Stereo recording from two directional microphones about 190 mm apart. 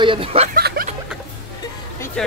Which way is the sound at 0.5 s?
55° right (ahead or behind).